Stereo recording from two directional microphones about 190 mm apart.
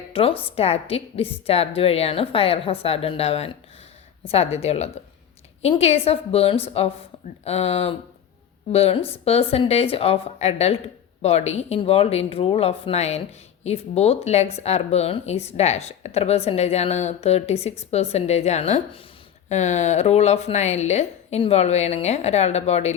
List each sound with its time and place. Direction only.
0.1 s speech: 30° left (ahead or behind)